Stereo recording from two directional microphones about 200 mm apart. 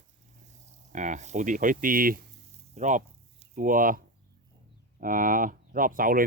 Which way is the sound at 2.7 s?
40° right (ahead or behind).